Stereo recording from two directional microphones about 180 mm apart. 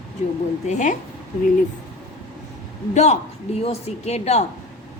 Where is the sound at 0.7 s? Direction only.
45° left (ahead or behind).